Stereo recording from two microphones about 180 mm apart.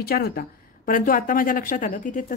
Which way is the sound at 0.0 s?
60° left (ahead or behind).